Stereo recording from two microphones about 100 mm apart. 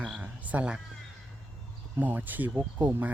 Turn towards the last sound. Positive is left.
turn(degrees=-20)  # may be behind; listen again after turning